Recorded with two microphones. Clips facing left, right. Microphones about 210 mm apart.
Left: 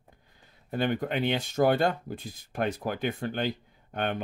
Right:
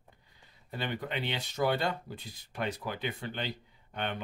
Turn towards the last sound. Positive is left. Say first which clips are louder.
# left 6 dB
turn(degrees=50)  # may be behind; listen again after turning